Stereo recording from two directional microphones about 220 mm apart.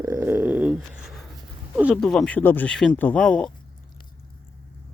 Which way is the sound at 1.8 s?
Centre (ahead or behind).